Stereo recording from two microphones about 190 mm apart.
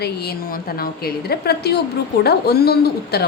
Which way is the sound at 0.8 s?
55° left (ahead or behind).